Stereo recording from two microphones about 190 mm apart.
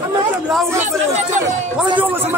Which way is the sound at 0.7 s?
40° right (ahead or behind).